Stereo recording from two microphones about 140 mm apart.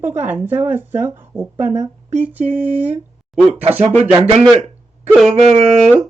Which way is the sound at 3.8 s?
50° right (ahead or behind).